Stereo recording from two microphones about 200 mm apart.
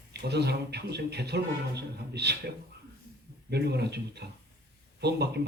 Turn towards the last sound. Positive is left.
turn(degrees=-55)  # may be behind; listen again after turning